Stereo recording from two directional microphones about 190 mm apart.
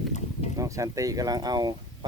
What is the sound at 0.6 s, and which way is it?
Speech, 15° right (ahead or behind).